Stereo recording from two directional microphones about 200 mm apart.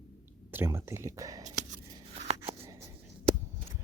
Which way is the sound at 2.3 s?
15° right (ahead or behind).